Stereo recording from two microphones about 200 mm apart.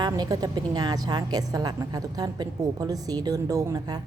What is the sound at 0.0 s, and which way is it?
A woman's voice, 20° right (ahead or behind).